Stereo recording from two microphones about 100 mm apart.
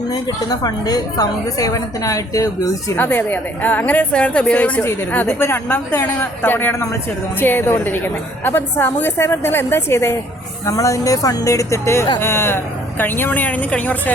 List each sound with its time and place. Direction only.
0.1 s a woman's voice: 40° left (ahead or behind)
2.9 s a woman's voice: 20° left (ahead or behind)